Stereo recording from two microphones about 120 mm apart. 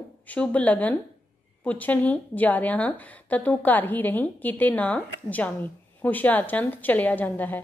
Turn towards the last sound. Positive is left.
turn(degrees=15)  # may be behind; listen again after turning